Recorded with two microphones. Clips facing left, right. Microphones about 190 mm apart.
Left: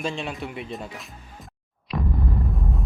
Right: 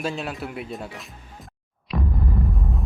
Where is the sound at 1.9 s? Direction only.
Centre (ahead or behind).